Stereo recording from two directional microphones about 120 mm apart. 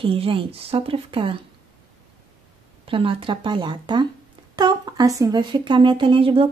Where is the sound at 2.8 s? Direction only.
50° right (ahead or behind); by 5.4 s 30° right (ahead or behind).